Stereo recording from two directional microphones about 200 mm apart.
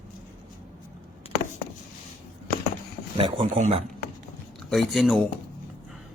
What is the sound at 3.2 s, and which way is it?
Speech, 25° right (ahead or behind).